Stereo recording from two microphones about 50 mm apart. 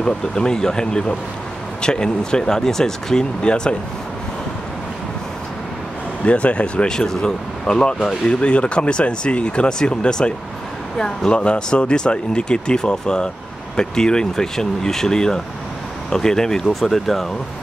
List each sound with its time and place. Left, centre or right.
0.0 s speech: centre
6.2 s speech: left; by 17.3 s centre